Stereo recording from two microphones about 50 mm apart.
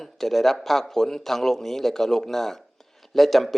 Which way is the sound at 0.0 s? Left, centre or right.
Centre.